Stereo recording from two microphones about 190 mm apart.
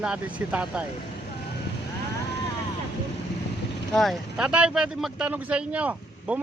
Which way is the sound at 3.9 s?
Centre (ahead or behind).